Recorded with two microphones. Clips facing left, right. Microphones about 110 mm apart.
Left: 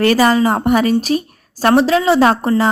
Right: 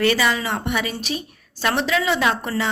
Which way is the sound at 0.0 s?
45° left (ahead or behind).